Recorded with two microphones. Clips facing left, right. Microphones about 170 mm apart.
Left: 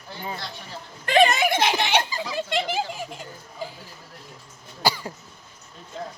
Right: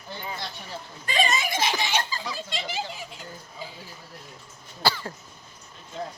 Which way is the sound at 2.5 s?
55° left (ahead or behind).